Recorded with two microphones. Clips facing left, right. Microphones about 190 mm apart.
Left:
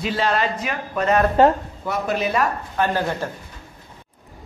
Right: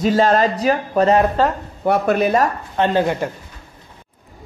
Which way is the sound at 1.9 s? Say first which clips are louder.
Right 7 dB; 55° right (ahead or behind).